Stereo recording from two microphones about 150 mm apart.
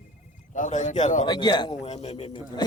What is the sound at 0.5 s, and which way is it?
Speech, 55° left (ahead or behind).